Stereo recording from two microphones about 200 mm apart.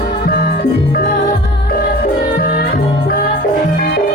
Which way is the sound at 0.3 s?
50° left (ahead or behind).